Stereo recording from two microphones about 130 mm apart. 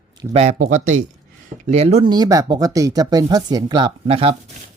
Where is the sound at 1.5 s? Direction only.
65° right (ahead or behind).